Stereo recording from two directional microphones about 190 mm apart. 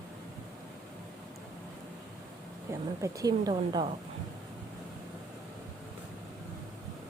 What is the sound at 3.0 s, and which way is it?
Speech, 20° right (ahead or behind).